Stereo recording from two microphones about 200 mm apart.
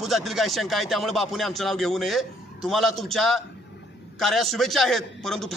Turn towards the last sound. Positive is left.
turn(degrees=0)  # may be behind; listen again after turning